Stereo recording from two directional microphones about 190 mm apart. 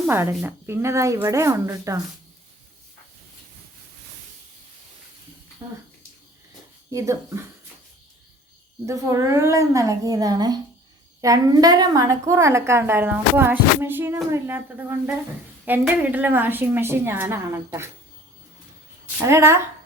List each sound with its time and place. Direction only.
0.1 s a woman's voice: 10° right (ahead or behind)
6.9 s a woman's voice: 15° right (ahead or behind)
8.9 s a woman's voice: 15° right (ahead or behind)
19.2 s a woman's voice: 15° right (ahead or behind)